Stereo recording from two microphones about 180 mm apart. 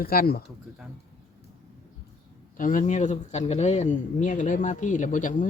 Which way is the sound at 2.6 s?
45° left (ahead or behind).